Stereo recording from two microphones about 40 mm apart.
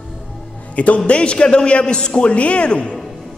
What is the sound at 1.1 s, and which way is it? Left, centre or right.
A man's voice, left.